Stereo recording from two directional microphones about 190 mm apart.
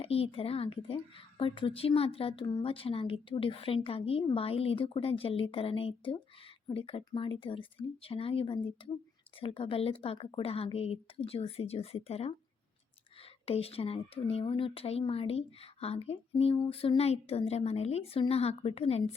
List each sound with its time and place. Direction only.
0.0 s a woman's voice: 30° left (ahead or behind)
13.4 s speech: 30° left (ahead or behind)